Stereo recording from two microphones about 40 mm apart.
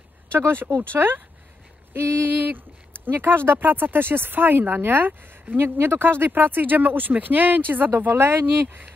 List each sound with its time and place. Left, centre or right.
0.3 s speech: right
2.0 s a sound: right
2.2 s speech: right
3.1 s speech: right
5.6 s speech: right
6.3 s speech: right
8.1 s speech: right